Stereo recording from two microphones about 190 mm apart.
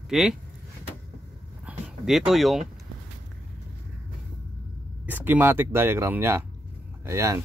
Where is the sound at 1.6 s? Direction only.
Centre (ahead or behind).